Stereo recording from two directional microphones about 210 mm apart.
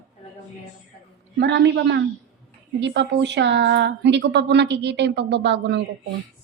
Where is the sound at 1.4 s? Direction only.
55° right (ahead or behind).